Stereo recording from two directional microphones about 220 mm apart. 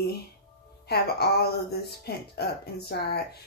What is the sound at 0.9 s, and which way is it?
Speech, 45° left (ahead or behind).